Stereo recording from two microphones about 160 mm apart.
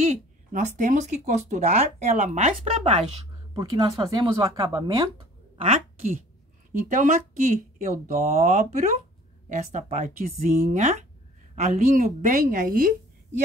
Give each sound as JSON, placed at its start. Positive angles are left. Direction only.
{"t": 0.5, "sound": "speech", "side_deg": -50}
{"t": 3.5, "sound": "speech", "side_deg": -25}
{"t": 5.6, "sound": "a woman's voice", "side_deg": -40}